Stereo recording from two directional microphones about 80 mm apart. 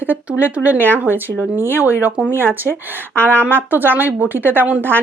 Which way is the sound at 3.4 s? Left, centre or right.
Right.